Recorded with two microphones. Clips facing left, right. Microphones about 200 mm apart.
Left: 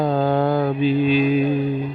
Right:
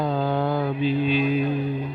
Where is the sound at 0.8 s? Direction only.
5° left (ahead or behind).